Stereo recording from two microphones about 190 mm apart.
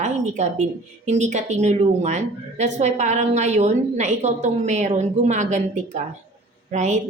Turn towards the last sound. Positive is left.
turn(degrees=-40)  # may be behind; listen again after turning